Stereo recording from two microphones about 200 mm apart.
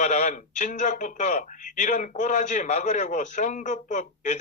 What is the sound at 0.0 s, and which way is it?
Speech, 40° left (ahead or behind).